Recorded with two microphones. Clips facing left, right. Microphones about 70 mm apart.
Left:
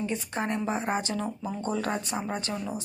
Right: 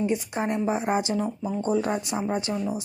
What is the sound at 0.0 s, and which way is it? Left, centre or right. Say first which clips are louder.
A woman's voice: right 5 dB; centre.